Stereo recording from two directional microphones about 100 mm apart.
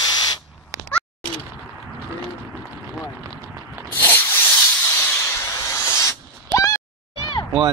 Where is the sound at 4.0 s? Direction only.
20° left (ahead or behind).